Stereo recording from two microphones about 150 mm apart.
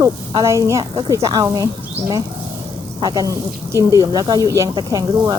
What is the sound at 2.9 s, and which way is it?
Speech, 25° right (ahead or behind).